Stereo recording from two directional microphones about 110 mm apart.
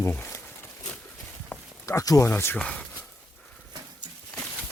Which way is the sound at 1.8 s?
30° left (ahead or behind).